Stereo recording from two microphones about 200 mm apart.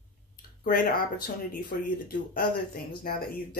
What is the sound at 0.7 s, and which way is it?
Speech, 45° left (ahead or behind).